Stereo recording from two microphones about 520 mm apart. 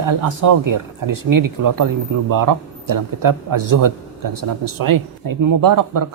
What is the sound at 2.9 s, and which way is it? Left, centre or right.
Speech, right.